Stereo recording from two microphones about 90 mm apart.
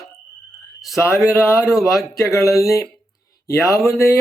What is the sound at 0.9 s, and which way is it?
Speech, 30° left (ahead or behind).